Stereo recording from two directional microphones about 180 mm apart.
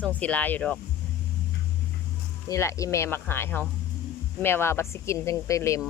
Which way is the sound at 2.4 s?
15° left (ahead or behind).